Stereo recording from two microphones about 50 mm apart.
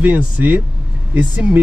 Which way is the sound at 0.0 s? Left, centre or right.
Right.